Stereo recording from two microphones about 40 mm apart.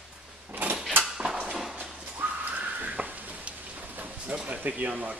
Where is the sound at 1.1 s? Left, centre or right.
Centre.